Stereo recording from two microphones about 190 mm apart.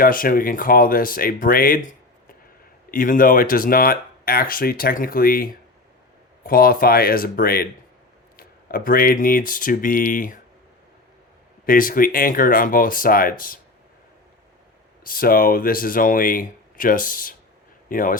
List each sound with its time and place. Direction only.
0.0 s speech: 50° left (ahead or behind)
2.9 s speech: 45° left (ahead or behind)
11.6 s speech: 45° left (ahead or behind)
15.0 s speech: 50° left (ahead or behind)